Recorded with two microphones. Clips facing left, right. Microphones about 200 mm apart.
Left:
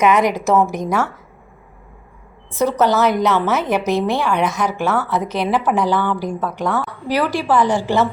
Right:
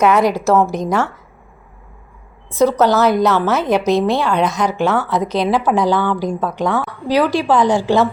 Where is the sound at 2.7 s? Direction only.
10° left (ahead or behind).